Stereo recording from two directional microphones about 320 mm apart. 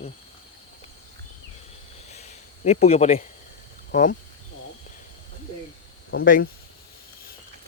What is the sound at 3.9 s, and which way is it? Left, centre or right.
Speech, left.